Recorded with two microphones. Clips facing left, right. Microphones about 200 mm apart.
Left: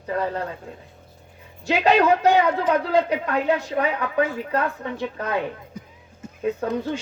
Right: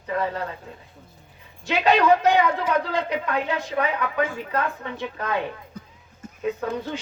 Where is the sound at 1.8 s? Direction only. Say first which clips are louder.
Even; 35° left (ahead or behind).